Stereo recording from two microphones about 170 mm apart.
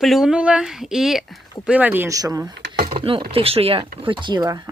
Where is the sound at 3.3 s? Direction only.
35° right (ahead or behind).